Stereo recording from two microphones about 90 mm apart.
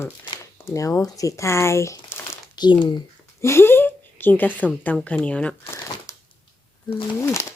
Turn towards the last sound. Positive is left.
turn(degrees=30)  # may be behind; listen again after turning